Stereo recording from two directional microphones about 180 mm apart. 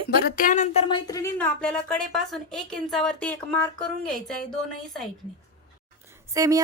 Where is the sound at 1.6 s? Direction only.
5° left (ahead or behind).